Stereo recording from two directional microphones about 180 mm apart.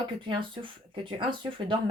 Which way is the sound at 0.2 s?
30° right (ahead or behind).